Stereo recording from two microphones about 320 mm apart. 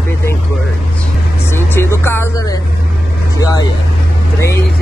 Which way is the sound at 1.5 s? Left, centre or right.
Centre.